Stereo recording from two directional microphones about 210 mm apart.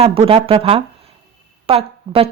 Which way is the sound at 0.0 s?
25° right (ahead or behind).